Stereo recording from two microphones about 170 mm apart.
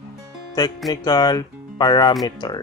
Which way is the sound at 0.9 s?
25° left (ahead or behind).